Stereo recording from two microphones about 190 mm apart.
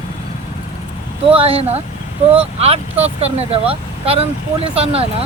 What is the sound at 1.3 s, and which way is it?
Speech, 30° right (ahead or behind).